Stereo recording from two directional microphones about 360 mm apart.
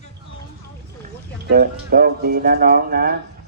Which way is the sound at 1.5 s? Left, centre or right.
Right.